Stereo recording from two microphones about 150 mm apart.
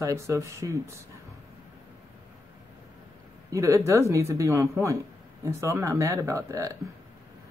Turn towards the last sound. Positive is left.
turn(degrees=-20)  # may be behind; listen again after turning